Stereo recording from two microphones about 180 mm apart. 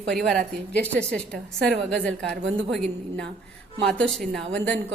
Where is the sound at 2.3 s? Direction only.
90° right.